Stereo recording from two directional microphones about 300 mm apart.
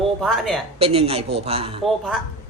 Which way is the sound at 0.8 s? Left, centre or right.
Centre.